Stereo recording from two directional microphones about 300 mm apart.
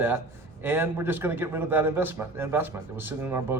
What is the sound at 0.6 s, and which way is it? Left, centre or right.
A man's voice, centre.